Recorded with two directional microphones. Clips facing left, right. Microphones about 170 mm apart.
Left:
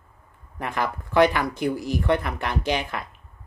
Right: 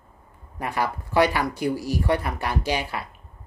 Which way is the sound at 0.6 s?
10° right (ahead or behind).